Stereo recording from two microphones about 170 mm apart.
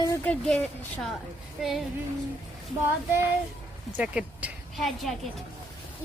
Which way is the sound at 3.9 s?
5° right (ahead or behind).